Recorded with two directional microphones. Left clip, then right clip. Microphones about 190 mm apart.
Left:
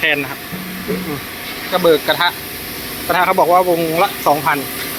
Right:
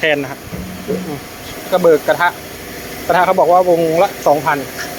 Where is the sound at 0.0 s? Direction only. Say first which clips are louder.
Right 1 dB; 25° right (ahead or behind).